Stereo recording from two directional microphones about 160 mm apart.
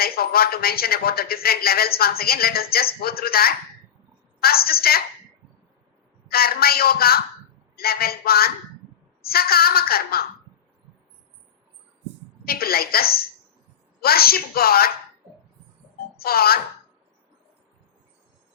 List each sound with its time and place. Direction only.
0.0 s speech: 70° left (ahead or behind)
6.3 s speech: 70° left (ahead or behind)
12.5 s speech: 70° left (ahead or behind)
16.2 s speech: 70° left (ahead or behind)